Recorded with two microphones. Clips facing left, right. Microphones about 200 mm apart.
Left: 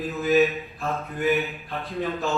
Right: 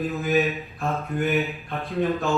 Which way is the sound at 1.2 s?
Centre (ahead or behind).